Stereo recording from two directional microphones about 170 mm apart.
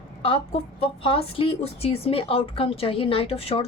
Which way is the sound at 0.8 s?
30° left (ahead or behind).